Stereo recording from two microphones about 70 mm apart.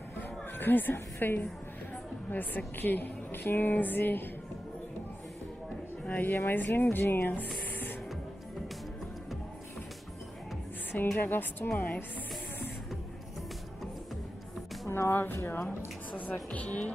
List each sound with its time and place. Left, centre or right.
0.6 s a woman's voice: left
6.0 s a woman's voice: left
10.9 s a woman's voice: left
14.9 s a woman's voice: left